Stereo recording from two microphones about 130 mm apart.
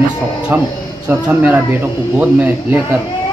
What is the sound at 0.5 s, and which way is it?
Speech, 15° right (ahead or behind).